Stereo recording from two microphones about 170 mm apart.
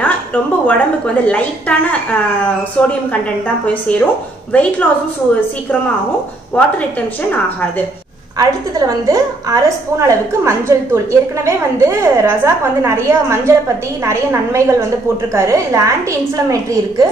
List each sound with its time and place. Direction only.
0.0 s a woman's voice: 10° left (ahead or behind)
4.5 s a woman's voice: 10° left (ahead or behind)
6.5 s a woman's voice: 10° left (ahead or behind)
8.4 s a woman's voice: 20° right (ahead or behind)